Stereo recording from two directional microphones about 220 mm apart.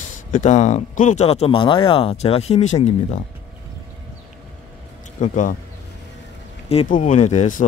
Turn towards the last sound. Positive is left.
turn(degrees=35)  # may be behind; listen again after turning